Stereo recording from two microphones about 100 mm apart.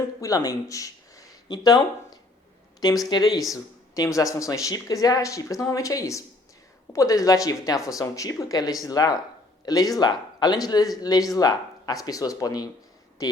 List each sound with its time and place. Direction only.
0.2 s speech: 35° left (ahead or behind)
2.8 s speech: 40° left (ahead or behind)